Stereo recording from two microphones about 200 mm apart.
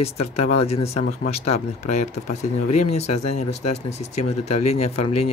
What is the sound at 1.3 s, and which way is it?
Speech, 30° left (ahead or behind).